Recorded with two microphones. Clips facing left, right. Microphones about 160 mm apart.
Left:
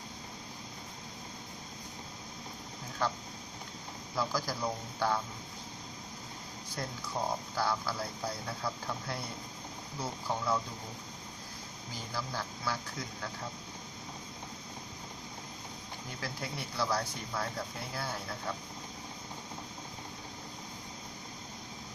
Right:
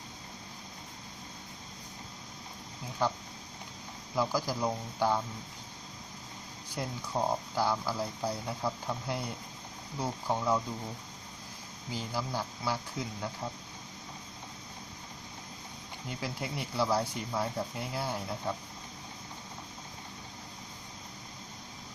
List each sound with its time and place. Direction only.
3.0 s speech: 15° right (ahead or behind)
4.2 s speech: 10° right (ahead or behind)
6.8 s speech: 15° right (ahead or behind)
7.1 s speech: 25° right (ahead or behind)
11.9 s speech: 15° right (ahead or behind)
16.2 s speech: 20° right (ahead or behind)